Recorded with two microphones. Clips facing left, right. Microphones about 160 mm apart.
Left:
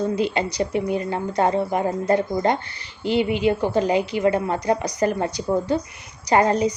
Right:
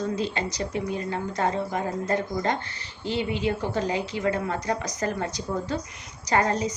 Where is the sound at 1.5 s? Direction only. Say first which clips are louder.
Left 6 dB; 60° left (ahead or behind).